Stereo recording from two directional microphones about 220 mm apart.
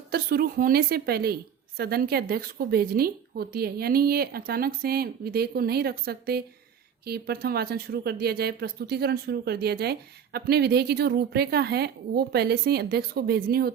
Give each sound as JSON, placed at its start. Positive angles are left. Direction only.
{"t": 0.1, "sound": "speech", "side_deg": -40}